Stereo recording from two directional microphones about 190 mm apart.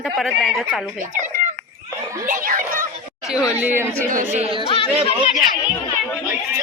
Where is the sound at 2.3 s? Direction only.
45° right (ahead or behind).